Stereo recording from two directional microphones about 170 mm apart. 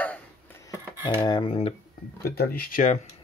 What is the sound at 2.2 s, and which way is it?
Speech, 65° left (ahead or behind).